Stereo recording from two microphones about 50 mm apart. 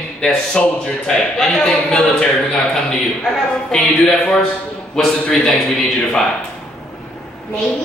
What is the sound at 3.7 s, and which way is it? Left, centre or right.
A man's voice, centre.